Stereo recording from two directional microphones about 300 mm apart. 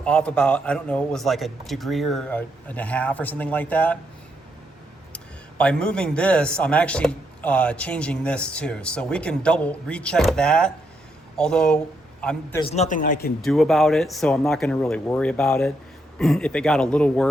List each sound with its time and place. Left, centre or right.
0.0 s a man's voice: centre
5.1 s a man's voice: centre
12.6 s a man's voice: left
13.4 s a man's voice: centre